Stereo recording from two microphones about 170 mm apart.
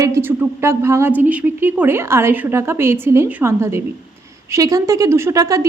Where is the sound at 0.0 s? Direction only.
15° right (ahead or behind).